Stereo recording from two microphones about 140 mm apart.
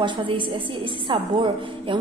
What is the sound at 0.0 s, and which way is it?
A woman's voice, 35° right (ahead or behind).